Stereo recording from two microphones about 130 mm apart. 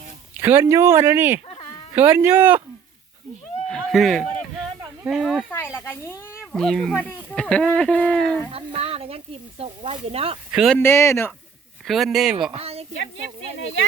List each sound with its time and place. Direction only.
0.3 s speech: 15° right (ahead or behind)
3.9 s speech: centre (ahead or behind)
5.5 s speech: 15° left (ahead or behind)
6.4 s speech: 5° left (ahead or behind)
8.5 s speech: 50° right (ahead or behind)
10.5 s speech: 5° right (ahead or behind)
10.8 s speech: 20° left (ahead or behind)
11.9 s speech: centre (ahead or behind)
12.5 s speech: 50° right (ahead or behind)